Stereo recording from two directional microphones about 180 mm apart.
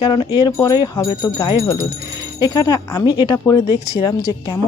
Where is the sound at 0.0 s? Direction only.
25° left (ahead or behind).